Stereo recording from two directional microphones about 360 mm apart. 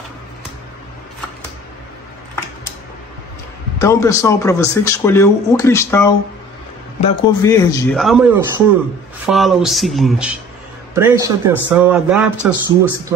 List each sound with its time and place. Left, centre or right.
3.8 s speech: centre